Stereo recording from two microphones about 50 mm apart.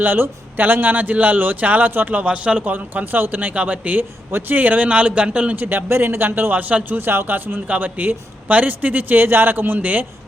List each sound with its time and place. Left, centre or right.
0.0 s a man's voice: right
2.2 s a man's voice: right
3.5 s a man's voice: right
4.3 s a man's voice: right
4.9 s speech: right
5.5 s a man's voice: right
7.0 s a man's voice: right